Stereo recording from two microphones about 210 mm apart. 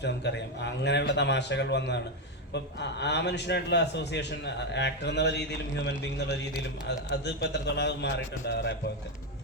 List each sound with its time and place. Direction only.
0.0 s a man's voice: 55° left (ahead or behind)